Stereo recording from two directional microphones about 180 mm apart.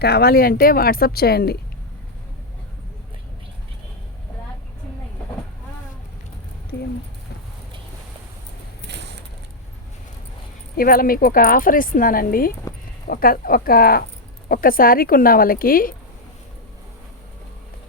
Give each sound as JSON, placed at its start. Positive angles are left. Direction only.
{"t": 0.0, "sound": "a woman's voice", "side_deg": 60}
{"t": 6.7, "sound": "speech", "side_deg": 70}
{"t": 8.9, "sound": "a sound", "side_deg": -70}
{"t": 10.8, "sound": "a woman's voice", "side_deg": 55}